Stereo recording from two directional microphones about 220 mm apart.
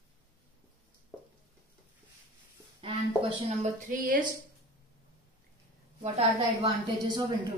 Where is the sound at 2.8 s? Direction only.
25° right (ahead or behind).